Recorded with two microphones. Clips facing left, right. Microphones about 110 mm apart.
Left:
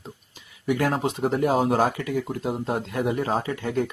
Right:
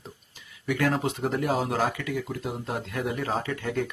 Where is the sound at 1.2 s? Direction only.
35° left (ahead or behind).